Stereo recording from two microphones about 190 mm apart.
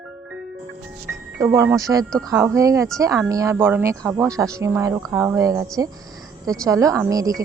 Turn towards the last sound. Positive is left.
turn(degrees=-20)  # may be behind; listen again after turning